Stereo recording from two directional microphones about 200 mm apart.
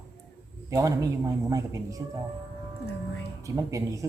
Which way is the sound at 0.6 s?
15° right (ahead or behind).